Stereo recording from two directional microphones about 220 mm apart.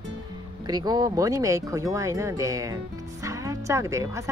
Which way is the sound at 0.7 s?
20° right (ahead or behind).